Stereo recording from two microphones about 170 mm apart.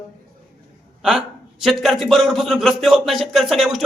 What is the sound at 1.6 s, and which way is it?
Speech, centre (ahead or behind).